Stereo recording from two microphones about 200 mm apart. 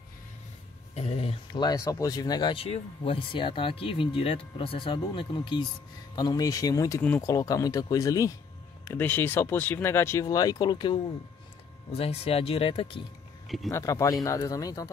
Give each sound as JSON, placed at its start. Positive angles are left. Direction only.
{"t": 0.9, "sound": "speech", "side_deg": 30}
{"t": 13.7, "sound": "speech", "side_deg": 15}